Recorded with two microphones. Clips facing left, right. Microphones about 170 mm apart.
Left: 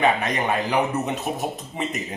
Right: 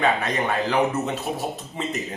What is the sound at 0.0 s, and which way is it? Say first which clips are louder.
Speech: left 1 dB; 20° left (ahead or behind).